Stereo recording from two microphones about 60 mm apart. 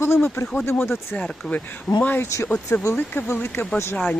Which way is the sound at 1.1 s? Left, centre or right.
Left.